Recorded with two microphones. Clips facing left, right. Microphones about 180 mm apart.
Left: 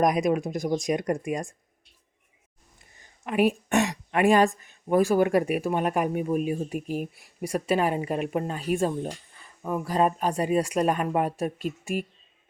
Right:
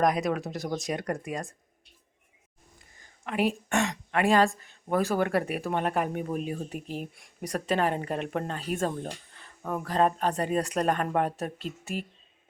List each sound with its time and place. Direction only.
0.0 s speech: 15° left (ahead or behind)
3.0 s speech: 15° left (ahead or behind)